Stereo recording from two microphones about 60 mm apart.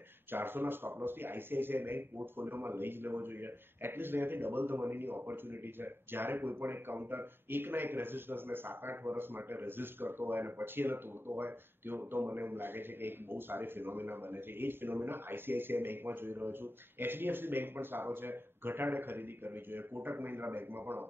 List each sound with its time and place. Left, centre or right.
0.3 s speech: right